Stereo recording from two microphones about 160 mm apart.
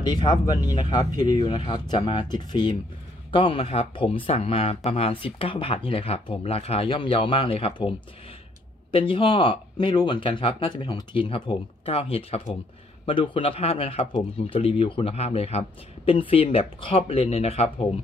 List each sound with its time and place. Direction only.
0.0 s speech: 25° left (ahead or behind)
8.9 s speech: 35° left (ahead or behind)